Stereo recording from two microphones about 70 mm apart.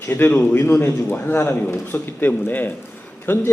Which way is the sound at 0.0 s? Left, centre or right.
Left.